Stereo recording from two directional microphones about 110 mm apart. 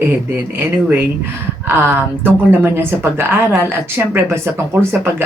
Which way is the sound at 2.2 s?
20° right (ahead or behind).